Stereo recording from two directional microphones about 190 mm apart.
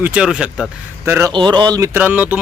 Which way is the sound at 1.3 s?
25° right (ahead or behind).